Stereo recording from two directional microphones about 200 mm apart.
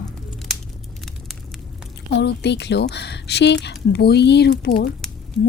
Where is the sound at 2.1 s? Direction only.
55° left (ahead or behind).